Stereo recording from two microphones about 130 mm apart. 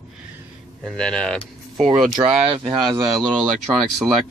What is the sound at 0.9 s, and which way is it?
Speech, 5° left (ahead or behind).